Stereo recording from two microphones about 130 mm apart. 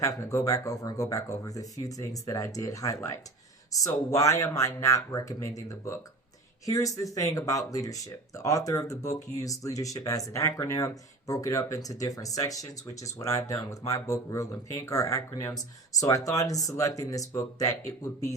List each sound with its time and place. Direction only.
0.0 s speech: 25° left (ahead or behind)